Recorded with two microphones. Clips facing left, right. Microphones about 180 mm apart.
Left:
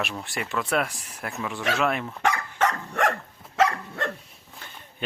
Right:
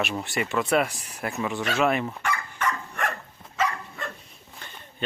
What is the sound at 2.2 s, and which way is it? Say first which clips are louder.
Dog: left 6 dB; 80° left.